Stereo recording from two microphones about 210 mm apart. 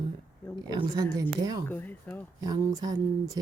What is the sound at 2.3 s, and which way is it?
Speech, 15° right (ahead or behind).